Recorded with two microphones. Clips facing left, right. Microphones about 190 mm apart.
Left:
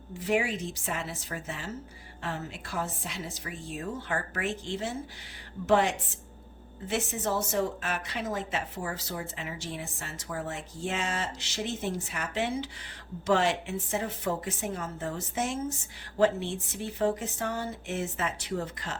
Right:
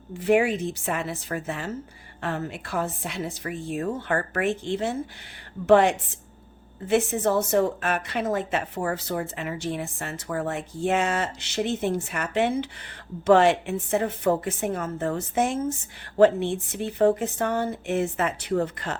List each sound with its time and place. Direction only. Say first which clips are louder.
0.2 s a woman's voice: right 7 dB; 60° right (ahead or behind)